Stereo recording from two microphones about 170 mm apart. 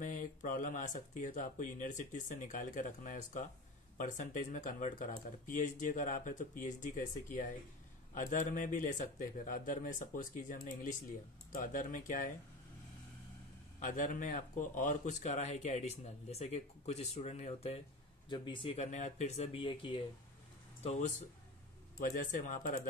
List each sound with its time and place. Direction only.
0.0 s speech: 50° left (ahead or behind)
13.7 s speech: 50° left (ahead or behind); by 20.0 s 30° left (ahead or behind)
20.8 s speech: 40° left (ahead or behind)
22.1 s speech: 50° left (ahead or behind)